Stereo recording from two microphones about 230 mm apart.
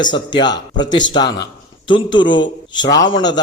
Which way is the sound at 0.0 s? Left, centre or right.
Centre.